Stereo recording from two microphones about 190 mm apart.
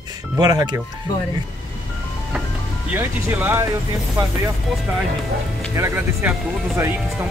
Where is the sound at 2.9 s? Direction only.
10° right (ahead or behind).